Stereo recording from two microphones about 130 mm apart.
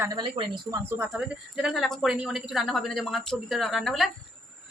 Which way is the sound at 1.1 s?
5° right (ahead or behind).